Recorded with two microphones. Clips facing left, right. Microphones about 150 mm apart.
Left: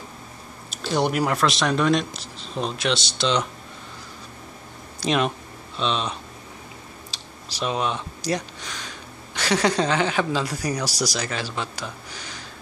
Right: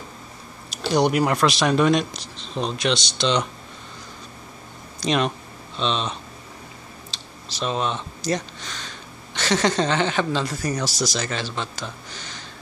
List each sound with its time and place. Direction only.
0.9 s speech: centre (ahead or behind)
5.0 s speech: 5° left (ahead or behind)
7.1 s computer keyboard: 10° left (ahead or behind)
7.5 s speech: 10° left (ahead or behind)